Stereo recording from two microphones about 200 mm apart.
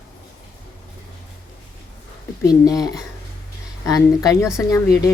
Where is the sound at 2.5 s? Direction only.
20° left (ahead or behind).